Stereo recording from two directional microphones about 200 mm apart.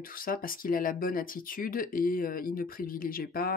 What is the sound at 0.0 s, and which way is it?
Speech, 45° left (ahead or behind).